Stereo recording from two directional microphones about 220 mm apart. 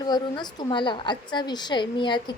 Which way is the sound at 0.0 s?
20° left (ahead or behind).